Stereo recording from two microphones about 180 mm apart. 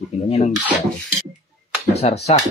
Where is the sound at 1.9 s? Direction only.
35° left (ahead or behind).